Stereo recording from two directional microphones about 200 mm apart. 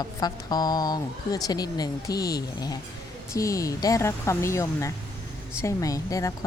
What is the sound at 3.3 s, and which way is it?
Speech, 15° left (ahead or behind).